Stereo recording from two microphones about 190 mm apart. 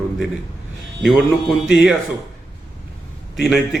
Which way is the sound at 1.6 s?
5° right (ahead or behind).